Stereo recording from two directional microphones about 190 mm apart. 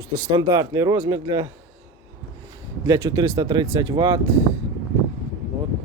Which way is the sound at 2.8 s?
20° right (ahead or behind).